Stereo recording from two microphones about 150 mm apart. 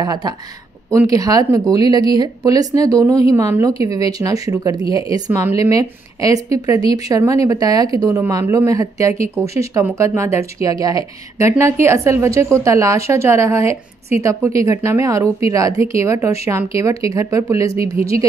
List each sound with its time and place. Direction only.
0.0 s speech: 25° right (ahead or behind)